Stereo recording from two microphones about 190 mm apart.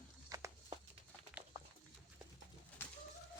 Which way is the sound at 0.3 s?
20° right (ahead or behind).